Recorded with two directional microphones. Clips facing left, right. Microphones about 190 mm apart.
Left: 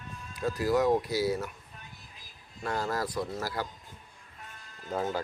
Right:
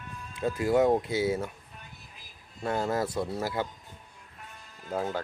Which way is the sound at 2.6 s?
20° right (ahead or behind).